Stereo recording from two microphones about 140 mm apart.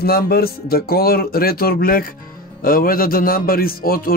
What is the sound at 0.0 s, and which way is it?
Speech, 90° left.